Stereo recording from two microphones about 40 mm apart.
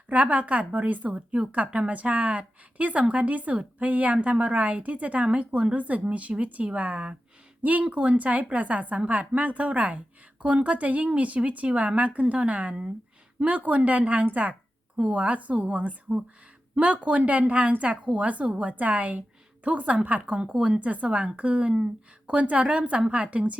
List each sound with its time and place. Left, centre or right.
0.1 s a woman's voice: right
20.4 s a woman's voice: right